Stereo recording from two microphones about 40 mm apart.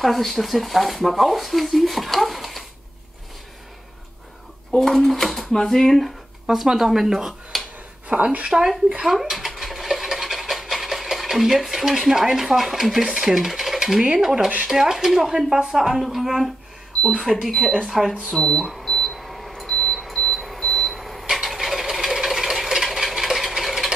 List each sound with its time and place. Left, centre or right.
0.0 s speech: centre
4.7 s speech: centre
6.5 s speech: centre
8.1 s speech: right
8.5 s speech: centre
9.0 s speech: centre
9.6 s a sound: centre
14.7 s speech: centre
18.3 s speech: centre
18.6 s speech: centre
18.9 s beep: centre
20.9 s a sound: centre